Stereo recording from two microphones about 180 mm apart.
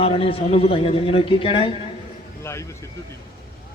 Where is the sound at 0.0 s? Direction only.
30° left (ahead or behind).